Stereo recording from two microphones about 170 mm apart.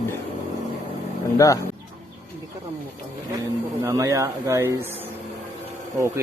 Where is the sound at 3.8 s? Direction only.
20° right (ahead or behind).